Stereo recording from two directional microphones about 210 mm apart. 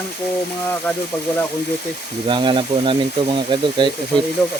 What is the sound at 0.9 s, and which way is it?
Speech, 10° left (ahead or behind).